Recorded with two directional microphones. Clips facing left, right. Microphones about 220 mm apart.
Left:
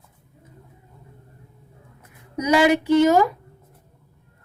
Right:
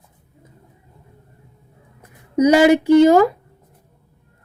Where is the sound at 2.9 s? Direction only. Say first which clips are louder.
Right 6 dB; 10° right (ahead or behind).